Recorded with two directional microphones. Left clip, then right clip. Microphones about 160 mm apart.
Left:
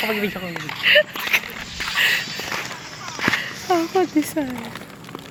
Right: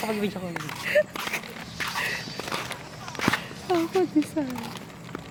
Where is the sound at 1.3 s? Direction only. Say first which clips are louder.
Left 15 dB; 10° right (ahead or behind).